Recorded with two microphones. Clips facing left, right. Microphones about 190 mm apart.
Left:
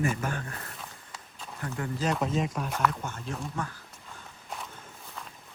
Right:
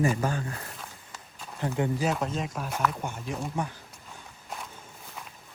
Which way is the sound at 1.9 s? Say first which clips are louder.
Even; 5° right (ahead or behind).